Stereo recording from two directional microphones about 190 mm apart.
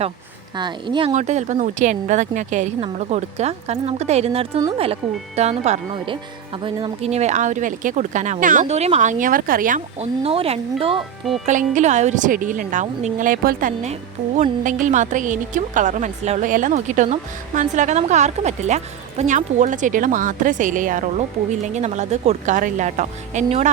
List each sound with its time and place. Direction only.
0.5 s speech: 25° right (ahead or behind)
1.1 s speech: 40° right (ahead or behind)
5.0 s speech: 5° right (ahead or behind)
5.4 s speech: 35° right (ahead or behind)
11.4 s speech: 40° right (ahead or behind)